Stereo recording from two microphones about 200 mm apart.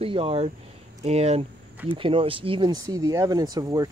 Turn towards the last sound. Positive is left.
turn(degrees=-20)  # may be behind; listen again after turning